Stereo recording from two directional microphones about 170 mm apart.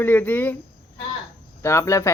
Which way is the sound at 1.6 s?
20° left (ahead or behind).